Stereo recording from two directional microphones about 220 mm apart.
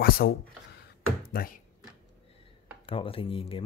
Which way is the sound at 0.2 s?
45° left (ahead or behind).